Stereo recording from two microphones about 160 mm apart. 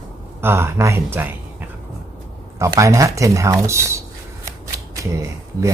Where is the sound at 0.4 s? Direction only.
15° right (ahead or behind).